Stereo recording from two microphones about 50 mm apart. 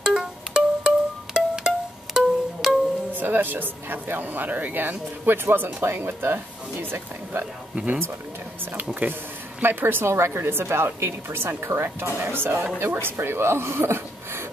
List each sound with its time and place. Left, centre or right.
0.0 s music: centre
2.1 s music: centre
3.1 s speech: right
7.7 s speech: right
9.6 s speech: right